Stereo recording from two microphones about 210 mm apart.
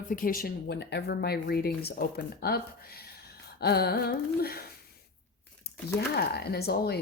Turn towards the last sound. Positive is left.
turn(degrees=50)  # may be behind; listen again after turning